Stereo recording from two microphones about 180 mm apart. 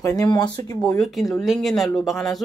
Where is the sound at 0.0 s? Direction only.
20° left (ahead or behind).